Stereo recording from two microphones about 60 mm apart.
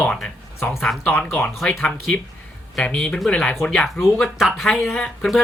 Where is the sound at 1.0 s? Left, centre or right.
Left.